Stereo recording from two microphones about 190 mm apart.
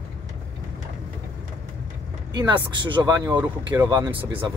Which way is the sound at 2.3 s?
25° right (ahead or behind).